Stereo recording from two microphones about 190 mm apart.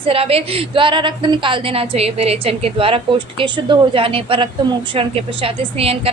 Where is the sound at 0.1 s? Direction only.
30° right (ahead or behind).